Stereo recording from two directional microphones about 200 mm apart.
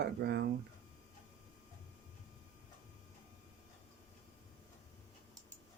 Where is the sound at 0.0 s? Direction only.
55° right (ahead or behind).